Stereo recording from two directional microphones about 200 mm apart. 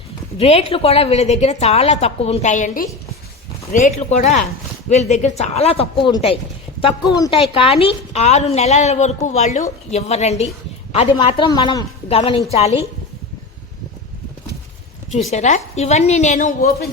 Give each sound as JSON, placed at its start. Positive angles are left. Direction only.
{"t": 0.3, "sound": "a woman's voice", "side_deg": 30}
{"t": 15.3, "sound": "a woman's voice", "side_deg": 35}